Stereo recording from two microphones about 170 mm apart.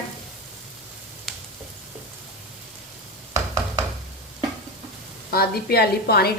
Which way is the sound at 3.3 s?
15° right (ahead or behind).